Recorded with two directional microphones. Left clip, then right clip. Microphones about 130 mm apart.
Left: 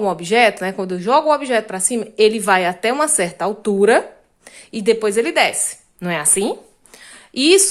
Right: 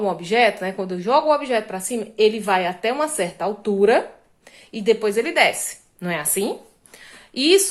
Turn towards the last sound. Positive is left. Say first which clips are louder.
# left 3 dB
turn(degrees=35)  # may be behind; listen again after turning